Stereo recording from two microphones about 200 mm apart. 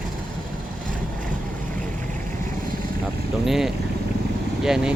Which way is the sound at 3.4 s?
Centre (ahead or behind).